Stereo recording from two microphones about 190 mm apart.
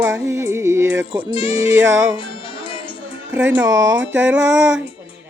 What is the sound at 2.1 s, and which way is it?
Music, 25° left (ahead or behind).